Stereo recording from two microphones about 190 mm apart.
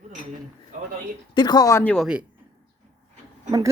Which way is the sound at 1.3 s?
20° left (ahead or behind).